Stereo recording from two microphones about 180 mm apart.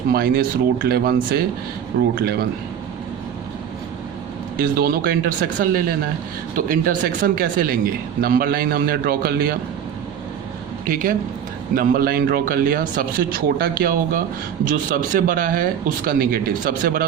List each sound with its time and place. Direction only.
0.1 s speech: 55° right (ahead or behind)
4.5 s speech: 55° right (ahead or behind)
6.6 s speech: 50° right (ahead or behind)
10.8 s speech: 50° right (ahead or behind)